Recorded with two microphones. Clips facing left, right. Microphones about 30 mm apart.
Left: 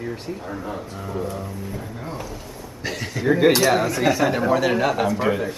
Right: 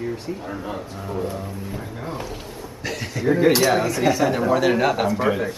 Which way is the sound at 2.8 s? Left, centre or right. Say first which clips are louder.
Even; centre.